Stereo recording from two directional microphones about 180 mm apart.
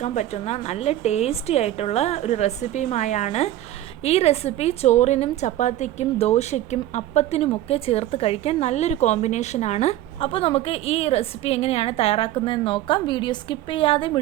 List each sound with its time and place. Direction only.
0.0 s a woman's voice: 40° left (ahead or behind)